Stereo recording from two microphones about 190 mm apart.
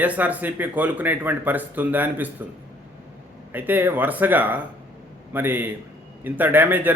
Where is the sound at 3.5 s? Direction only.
10° right (ahead or behind).